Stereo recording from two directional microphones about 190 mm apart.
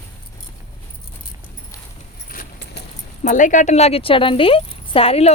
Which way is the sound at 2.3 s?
55° left (ahead or behind).